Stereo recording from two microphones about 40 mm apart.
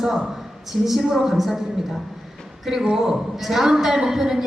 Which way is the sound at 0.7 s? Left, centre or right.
Centre.